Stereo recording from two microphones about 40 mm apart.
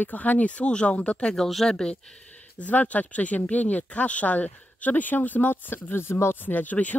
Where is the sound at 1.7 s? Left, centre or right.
Centre.